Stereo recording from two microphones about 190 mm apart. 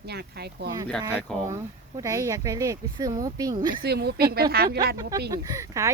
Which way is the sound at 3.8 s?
60° right (ahead or behind).